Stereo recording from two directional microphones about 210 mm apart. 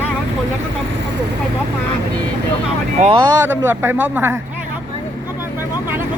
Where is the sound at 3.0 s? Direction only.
25° right (ahead or behind).